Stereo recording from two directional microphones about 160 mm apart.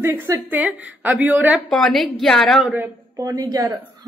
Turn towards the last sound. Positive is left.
turn(degrees=-20)  # may be behind; listen again after turning